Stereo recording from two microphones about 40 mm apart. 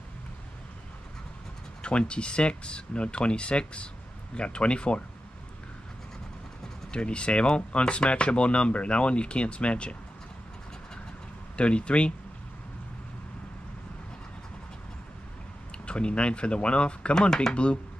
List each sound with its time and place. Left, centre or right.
1.8 s speech: left
6.9 s speech: left
11.5 s speech: left
15.7 s speech: left
17.3 s speech: centre